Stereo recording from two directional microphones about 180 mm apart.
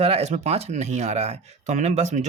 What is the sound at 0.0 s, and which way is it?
Speech, 35° right (ahead or behind).